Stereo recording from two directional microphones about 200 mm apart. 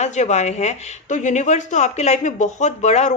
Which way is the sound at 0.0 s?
35° left (ahead or behind).